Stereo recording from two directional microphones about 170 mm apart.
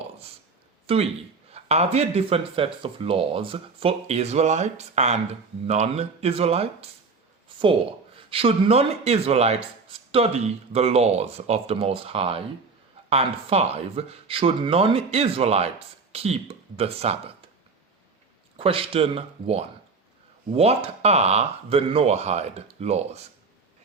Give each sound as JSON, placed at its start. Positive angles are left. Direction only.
{"t": 0.9, "sound": "speech", "side_deg": -35}
{"t": 18.5, "sound": "speech", "side_deg": -35}